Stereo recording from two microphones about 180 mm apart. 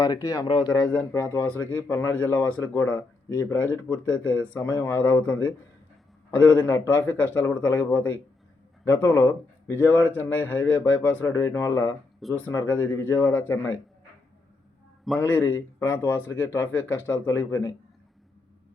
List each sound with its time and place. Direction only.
0.0 s a man's voice: 20° left (ahead or behind)
6.6 s a man's voice: 15° left (ahead or behind)
15.2 s a man's voice: 15° left (ahead or behind)